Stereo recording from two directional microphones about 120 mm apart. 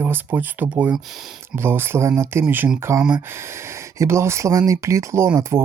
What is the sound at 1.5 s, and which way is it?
Speech, 20° right (ahead or behind).